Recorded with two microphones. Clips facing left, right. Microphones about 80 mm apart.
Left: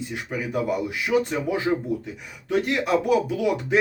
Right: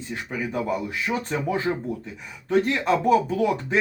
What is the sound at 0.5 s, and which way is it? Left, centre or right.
Speech, centre.